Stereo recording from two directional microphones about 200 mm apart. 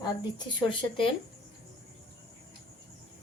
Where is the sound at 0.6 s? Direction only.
25° left (ahead or behind).